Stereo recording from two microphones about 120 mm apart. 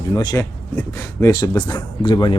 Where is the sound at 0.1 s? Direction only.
30° left (ahead or behind).